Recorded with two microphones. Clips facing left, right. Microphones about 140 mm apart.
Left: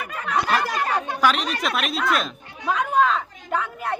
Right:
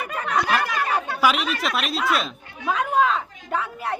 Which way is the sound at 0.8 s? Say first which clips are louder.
Even; 15° left (ahead or behind).